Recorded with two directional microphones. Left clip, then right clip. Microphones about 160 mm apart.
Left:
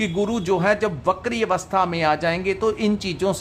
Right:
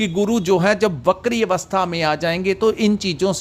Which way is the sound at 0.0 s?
30° right (ahead or behind).